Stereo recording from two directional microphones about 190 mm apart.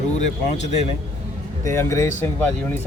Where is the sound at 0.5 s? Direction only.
35° left (ahead or behind).